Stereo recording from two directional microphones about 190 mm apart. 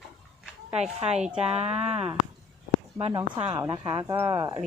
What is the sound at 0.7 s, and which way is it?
A woman's voice, 35° right (ahead or behind).